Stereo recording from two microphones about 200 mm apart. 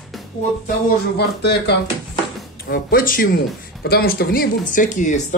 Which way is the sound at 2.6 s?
45° left (ahead or behind).